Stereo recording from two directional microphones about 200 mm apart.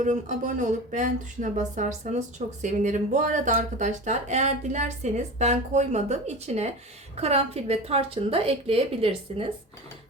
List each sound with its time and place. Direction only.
0.0 s a woman's voice: 40° right (ahead or behind)